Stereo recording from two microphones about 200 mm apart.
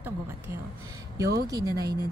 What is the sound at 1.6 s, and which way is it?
Speech, 20° right (ahead or behind).